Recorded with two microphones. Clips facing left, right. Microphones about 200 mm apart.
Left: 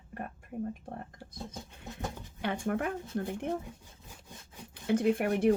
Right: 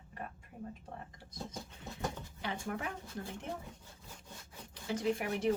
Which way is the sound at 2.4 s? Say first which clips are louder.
Left 8 dB; 55° left (ahead or behind).